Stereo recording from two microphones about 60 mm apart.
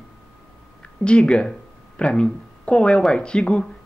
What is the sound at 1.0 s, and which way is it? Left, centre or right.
A woman's voice, centre.